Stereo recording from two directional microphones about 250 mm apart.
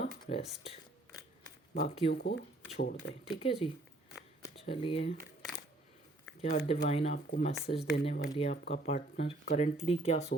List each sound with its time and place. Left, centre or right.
0.0 s a sound: left
1.7 s speech: left
2.1 s speech: left
3.4 s speech: left
6.7 s speech: left